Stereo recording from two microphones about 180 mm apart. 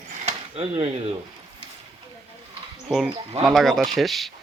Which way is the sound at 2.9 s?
5° right (ahead or behind).